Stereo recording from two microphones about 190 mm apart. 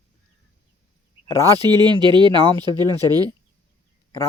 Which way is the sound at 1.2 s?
15° left (ahead or behind).